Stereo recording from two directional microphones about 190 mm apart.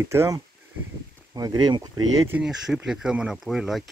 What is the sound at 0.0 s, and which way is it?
Speech, 15° right (ahead or behind).